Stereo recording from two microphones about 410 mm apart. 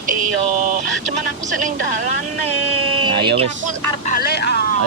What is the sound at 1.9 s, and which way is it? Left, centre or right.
Speech, right.